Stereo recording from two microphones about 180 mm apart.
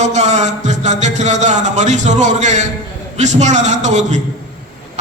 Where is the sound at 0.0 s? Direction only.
40° right (ahead or behind).